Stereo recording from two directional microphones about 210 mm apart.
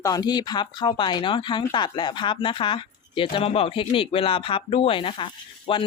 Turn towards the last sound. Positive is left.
turn(degrees=25)  # may be behind; listen again after turning